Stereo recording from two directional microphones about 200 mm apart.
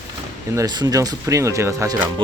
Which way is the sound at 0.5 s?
20° right (ahead or behind).